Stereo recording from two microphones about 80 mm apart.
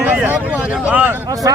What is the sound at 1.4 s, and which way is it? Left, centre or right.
Speech, right.